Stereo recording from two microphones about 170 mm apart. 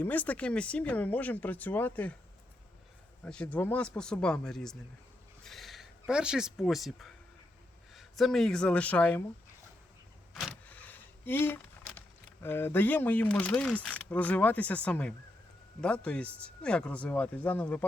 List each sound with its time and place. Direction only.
0.0 s speech: 10° left (ahead or behind)
3.2 s speech: 5° left (ahead or behind)
5.4 s a sound: centre (ahead or behind)
7.9 s speech: centre (ahead or behind)
10.4 s speech: 10° left (ahead or behind)